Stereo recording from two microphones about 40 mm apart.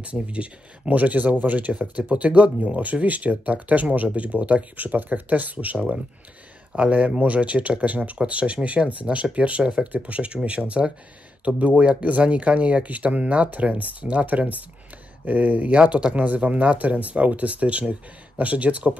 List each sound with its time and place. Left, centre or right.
0.0 s speech: right
1.7 s speech: right
4.7 s speech: right
9.7 s speech: centre
10.0 s speech: right